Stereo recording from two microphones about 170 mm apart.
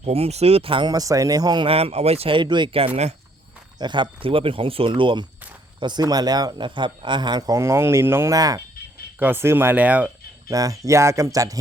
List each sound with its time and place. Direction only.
0.0 s speech: 35° right (ahead or behind)
3.8 s speech: 25° right (ahead or behind)
9.1 s speech: 10° right (ahead or behind)
10.5 s speech: 20° right (ahead or behind)